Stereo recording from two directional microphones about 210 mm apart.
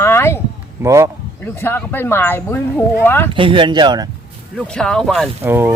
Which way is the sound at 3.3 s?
25° right (ahead or behind).